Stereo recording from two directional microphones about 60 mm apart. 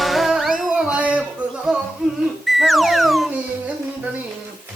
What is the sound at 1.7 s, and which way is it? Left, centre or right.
Music, centre.